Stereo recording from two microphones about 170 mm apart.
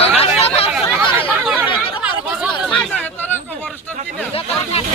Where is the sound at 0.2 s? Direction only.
35° left (ahead or behind).